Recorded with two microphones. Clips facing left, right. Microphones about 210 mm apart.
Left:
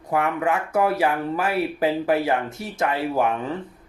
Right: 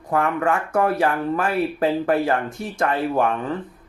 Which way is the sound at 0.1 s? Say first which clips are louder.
Right 2 dB; 10° left (ahead or behind).